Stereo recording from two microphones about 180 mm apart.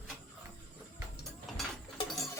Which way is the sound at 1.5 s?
Centre (ahead or behind).